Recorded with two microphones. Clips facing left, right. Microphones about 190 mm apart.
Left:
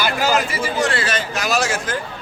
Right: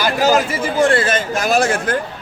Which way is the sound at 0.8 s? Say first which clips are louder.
Right 8 dB; 50° right (ahead or behind).